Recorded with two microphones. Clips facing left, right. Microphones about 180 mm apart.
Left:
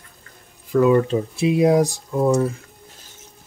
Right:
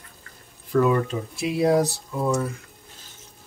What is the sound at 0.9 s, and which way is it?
Speech, 25° left (ahead or behind).